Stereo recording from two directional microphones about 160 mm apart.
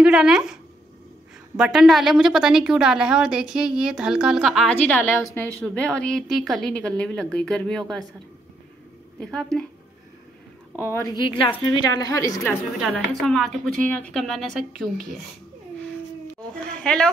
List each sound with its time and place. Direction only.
0.0 s speech: 5° right (ahead or behind)
1.6 s a woman's voice: 5° right (ahead or behind)
4.8 s a woman's voice: 15° left (ahead or behind)
9.2 s a woman's voice: 5° left (ahead or behind)
11.1 s a woman's voice: 30° left (ahead or behind)
12.9 s a woman's voice: centre (ahead or behind)
16.8 s a woman's voice: 5° left (ahead or behind)